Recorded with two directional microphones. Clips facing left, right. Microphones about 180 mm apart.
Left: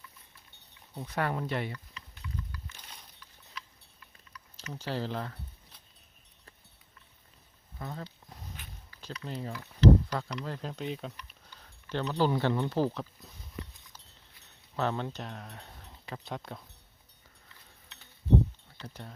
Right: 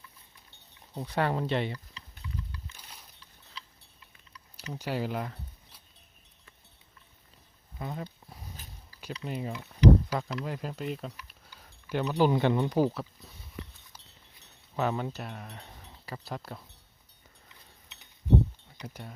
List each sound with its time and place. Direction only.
0.9 s speech: 30° right (ahead or behind)
2.7 s a sound: 10° right (ahead or behind)
3.6 s a sound: 30° right (ahead or behind)
4.7 s speech: 15° right (ahead or behind)
7.8 s speech: 15° right (ahead or behind)
9.2 s speech: 15° right (ahead or behind)
10.1 s speech: 5° right (ahead or behind)
14.8 s speech: 10° right (ahead or behind)
17.5 s a sound: 15° right (ahead or behind)
18.8 s speech: 10° right (ahead or behind)